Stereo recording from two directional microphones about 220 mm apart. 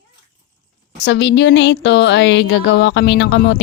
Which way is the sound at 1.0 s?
50° left (ahead or behind).